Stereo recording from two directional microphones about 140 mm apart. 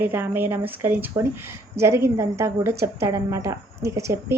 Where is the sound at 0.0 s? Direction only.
15° right (ahead or behind).